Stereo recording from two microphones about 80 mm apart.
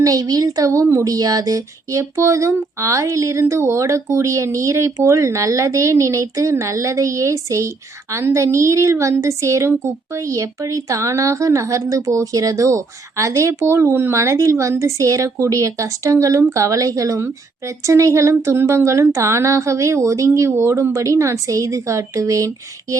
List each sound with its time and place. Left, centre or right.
0.0 s a woman's voice: right